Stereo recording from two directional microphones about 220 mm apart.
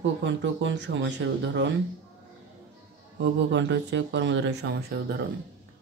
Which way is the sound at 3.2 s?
55° right (ahead or behind).